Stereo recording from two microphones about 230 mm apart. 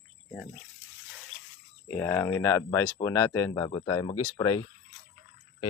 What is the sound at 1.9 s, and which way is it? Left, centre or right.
Speech, centre.